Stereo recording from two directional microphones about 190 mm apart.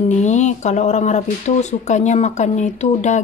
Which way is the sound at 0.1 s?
40° left (ahead or behind).